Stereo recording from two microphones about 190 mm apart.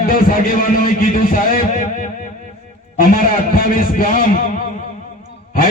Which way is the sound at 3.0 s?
45° left (ahead or behind).